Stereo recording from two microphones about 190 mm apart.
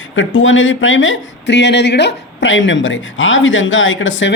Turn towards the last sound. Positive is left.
turn(degrees=80)